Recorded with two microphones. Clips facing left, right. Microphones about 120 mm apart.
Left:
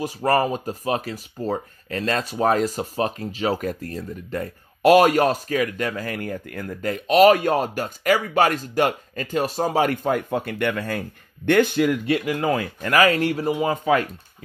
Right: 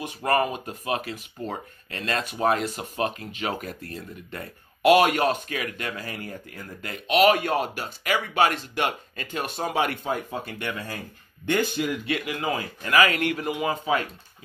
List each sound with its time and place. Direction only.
0.0 s speech: 35° left (ahead or behind)
6.1 s speech: 55° left (ahead or behind)
6.8 s speech: 40° left (ahead or behind)
10.1 s speech: 60° left (ahead or behind)
12.1 s speech: 40° left (ahead or behind)
13.1 s speech: 35° left (ahead or behind)